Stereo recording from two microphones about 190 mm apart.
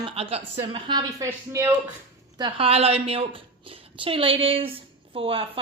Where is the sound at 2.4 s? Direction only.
30° right (ahead or behind).